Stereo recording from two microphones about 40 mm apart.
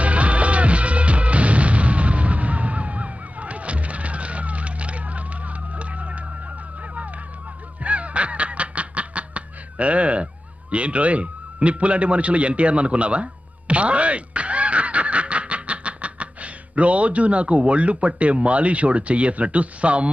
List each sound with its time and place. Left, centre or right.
0.0 s music: right
7.8 s honk: right
10.7 s speech: right